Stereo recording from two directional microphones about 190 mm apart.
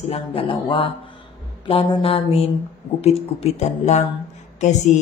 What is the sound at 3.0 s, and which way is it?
Mantra, 35° left (ahead or behind).